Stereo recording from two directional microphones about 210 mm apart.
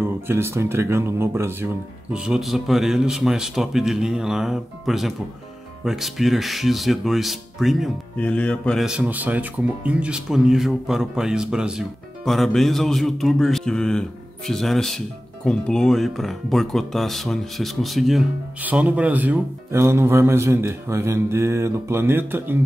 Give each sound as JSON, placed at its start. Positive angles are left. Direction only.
{"t": 0.0, "sound": "speech", "side_deg": -10}